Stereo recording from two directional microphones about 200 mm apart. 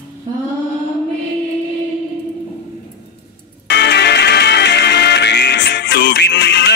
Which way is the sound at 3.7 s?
60° left (ahead or behind).